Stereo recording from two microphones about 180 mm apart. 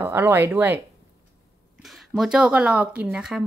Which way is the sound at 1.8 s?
Centre (ahead or behind).